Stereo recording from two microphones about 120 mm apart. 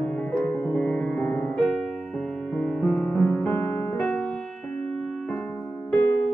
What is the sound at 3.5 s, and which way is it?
Music, 20° left (ahead or behind).